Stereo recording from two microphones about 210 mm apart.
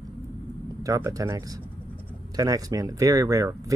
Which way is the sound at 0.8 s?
15° right (ahead or behind).